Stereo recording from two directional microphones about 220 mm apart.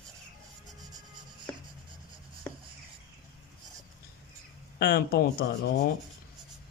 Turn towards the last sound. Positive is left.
turn(degrees=45)  # may be behind; listen again after turning